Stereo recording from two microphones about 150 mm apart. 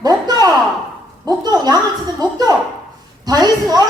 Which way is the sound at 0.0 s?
25° right (ahead or behind).